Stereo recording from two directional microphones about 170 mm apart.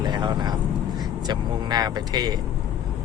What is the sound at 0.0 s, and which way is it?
Vehicle, 25° right (ahead or behind).